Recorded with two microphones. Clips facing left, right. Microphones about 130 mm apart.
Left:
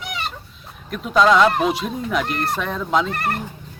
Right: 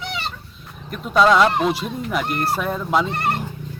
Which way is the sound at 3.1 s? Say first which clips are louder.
Right 1 dB; 25° right (ahead or behind).